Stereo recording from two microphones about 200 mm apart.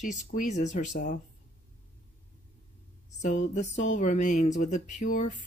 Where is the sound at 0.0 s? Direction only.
40° left (ahead or behind).